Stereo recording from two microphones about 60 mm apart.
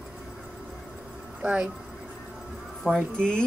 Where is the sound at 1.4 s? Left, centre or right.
Right.